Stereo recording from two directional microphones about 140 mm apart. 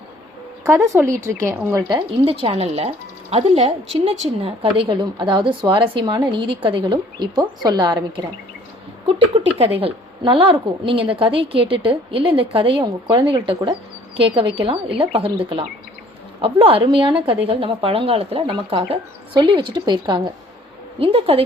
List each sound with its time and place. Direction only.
0.9 s a woman's voice: 20° right (ahead or behind)
2.0 s a woman's voice: 40° right (ahead or behind)
9.0 s a woman's voice: 45° right (ahead or behind)